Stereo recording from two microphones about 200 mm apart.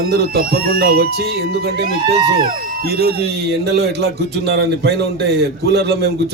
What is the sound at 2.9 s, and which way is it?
Speech, 50° right (ahead or behind).